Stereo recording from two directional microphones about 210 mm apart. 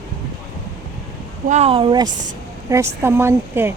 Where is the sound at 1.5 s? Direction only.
30° right (ahead or behind).